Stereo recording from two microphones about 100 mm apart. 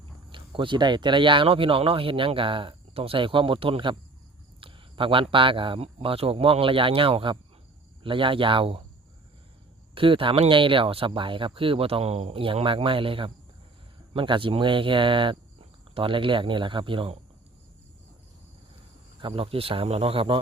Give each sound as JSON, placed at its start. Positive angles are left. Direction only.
{"t": 0.3, "sound": "speech", "side_deg": -55}
{"t": 9.9, "sound": "speech", "side_deg": -60}
{"t": 19.2, "sound": "speech", "side_deg": -70}